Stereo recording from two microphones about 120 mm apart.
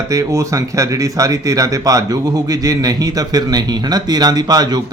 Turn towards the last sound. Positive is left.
turn(degrees=-35)  # may be behind; listen again after turning